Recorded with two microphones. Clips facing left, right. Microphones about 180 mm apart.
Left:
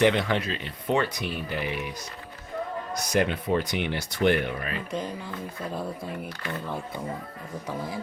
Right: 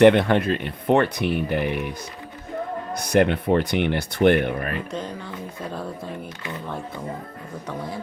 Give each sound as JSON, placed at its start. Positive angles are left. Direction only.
{"t": 0.0, "sound": "speech", "side_deg": -55}
{"t": 2.9, "sound": "speech", "side_deg": -60}
{"t": 6.2, "sound": "speech", "side_deg": -20}